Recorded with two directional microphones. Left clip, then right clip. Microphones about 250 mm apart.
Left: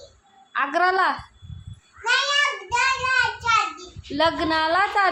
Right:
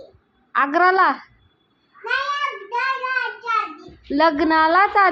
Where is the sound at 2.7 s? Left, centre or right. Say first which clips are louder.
Left 1 dB; left.